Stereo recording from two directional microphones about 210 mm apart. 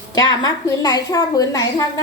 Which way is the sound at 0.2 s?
20° left (ahead or behind).